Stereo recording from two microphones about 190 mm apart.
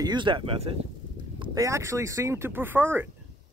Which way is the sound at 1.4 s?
20° right (ahead or behind).